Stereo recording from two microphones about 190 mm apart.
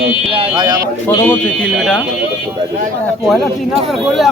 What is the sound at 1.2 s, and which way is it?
Speech, 5° left (ahead or behind).